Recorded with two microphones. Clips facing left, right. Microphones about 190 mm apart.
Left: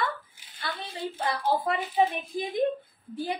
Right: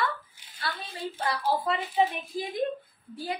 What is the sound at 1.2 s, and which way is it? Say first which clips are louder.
A woman's voice: left 1 dB; 25° left (ahead or behind).